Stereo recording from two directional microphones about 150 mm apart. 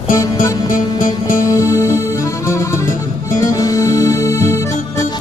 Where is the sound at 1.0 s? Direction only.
65° left (ahead or behind).